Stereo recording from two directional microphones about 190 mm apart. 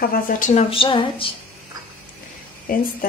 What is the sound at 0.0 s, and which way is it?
Speech, 45° left (ahead or behind).